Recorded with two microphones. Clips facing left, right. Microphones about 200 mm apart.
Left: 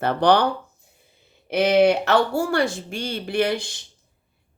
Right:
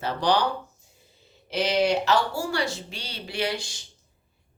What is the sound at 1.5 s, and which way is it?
Speech, 55° left (ahead or behind).